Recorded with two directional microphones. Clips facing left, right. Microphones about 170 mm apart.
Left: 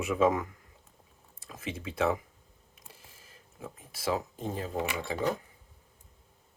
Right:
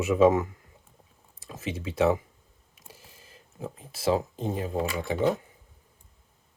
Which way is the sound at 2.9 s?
25° right (ahead or behind).